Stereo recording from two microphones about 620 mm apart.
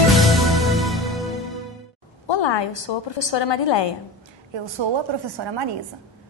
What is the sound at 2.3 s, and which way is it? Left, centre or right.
A woman's voice, left.